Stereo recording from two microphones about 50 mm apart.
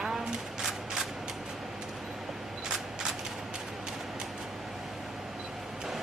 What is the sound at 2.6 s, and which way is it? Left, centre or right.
Single-lens reflex camera, centre.